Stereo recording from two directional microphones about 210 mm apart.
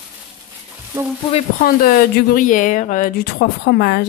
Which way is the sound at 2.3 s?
40° left (ahead or behind).